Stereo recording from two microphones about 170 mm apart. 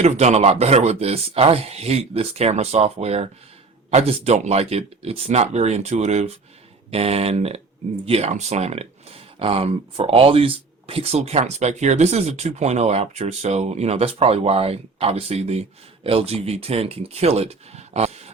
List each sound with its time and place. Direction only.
0.0 s speech: 40° right (ahead or behind)